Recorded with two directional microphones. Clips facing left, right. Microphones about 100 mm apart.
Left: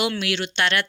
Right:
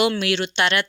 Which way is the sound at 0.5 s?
10° right (ahead or behind).